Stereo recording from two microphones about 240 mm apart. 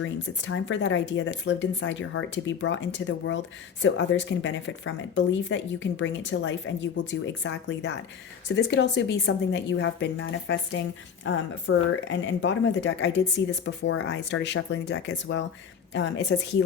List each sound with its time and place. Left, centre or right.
0.0 s speech: left